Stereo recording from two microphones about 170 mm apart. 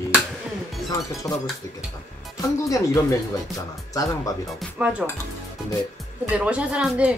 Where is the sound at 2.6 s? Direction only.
20° left (ahead or behind).